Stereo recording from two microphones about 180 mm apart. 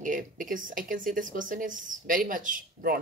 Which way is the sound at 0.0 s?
45° right (ahead or behind).